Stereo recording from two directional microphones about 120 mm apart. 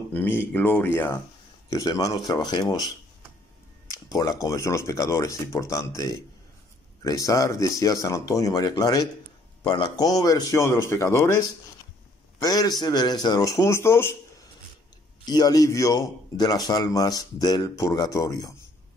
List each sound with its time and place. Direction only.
0.1 s a man's voice: 20° left (ahead or behind); by 2.9 s 35° left (ahead or behind)
3.9 s a man's voice: 30° left (ahead or behind)
15.2 s a man's voice: 35° left (ahead or behind)